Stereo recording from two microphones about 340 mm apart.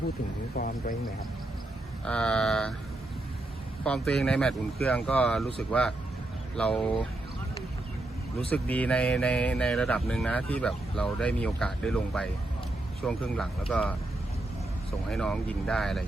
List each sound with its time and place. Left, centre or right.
0.5 s speech: left
2.0 s speech: centre
3.8 s speech: centre
8.4 s speech: centre
15.1 s speech: centre